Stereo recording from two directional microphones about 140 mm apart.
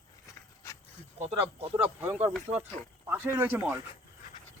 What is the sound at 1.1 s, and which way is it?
Speech, 45° right (ahead or behind).